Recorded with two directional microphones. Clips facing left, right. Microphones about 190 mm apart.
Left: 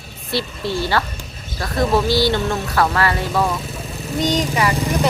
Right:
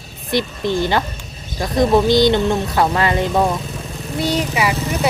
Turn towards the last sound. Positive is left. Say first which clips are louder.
# even
turn(degrees=-10)  # may be behind; listen again after turning